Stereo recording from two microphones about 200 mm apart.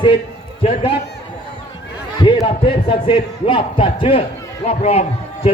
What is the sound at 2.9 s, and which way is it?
A man's voice, 25° left (ahead or behind).